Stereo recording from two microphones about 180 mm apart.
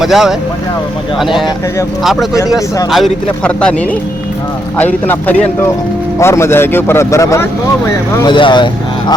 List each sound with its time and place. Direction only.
0.0 s a man's voice: centre (ahead or behind)
2.9 s a man's voice: 5° left (ahead or behind)
4.8 s speech: 10° left (ahead or behind); by 9.1 s 25° left (ahead or behind)